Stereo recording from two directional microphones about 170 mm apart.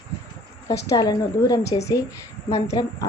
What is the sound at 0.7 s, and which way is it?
A woman's voice, 20° left (ahead or behind).